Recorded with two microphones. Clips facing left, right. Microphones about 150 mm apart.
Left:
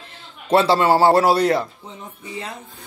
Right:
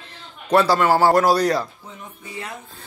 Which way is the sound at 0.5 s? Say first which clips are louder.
Left 1 dB; 25° left (ahead or behind).